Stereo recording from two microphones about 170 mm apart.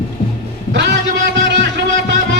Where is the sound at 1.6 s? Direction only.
90° right.